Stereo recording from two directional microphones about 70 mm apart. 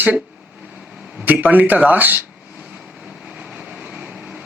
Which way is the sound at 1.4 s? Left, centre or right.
Right.